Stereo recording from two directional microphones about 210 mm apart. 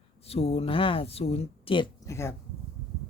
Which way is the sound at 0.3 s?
30° left (ahead or behind).